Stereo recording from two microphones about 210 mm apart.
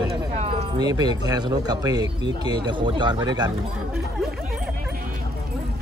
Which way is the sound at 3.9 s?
Centre (ahead or behind).